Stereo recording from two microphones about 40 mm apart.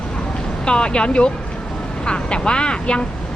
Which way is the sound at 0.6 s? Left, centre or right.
Left.